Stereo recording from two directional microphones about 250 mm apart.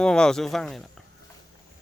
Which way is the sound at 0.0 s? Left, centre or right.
Centre.